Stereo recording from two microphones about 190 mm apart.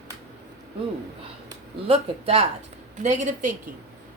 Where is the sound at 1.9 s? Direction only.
30° right (ahead or behind).